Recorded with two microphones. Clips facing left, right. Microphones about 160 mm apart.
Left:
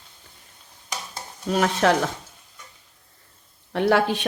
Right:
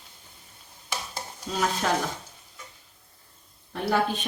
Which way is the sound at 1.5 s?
70° left (ahead or behind).